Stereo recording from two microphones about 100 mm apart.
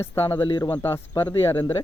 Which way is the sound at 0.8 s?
25° left (ahead or behind).